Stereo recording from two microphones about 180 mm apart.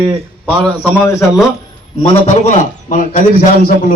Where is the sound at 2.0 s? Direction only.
40° left (ahead or behind).